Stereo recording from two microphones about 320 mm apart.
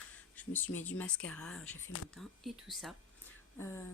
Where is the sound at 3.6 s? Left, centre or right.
Centre.